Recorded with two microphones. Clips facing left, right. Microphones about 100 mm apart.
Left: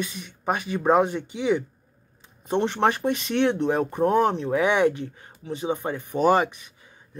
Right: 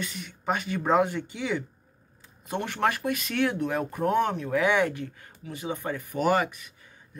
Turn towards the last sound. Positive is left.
turn(degrees=20)  # may be behind; listen again after turning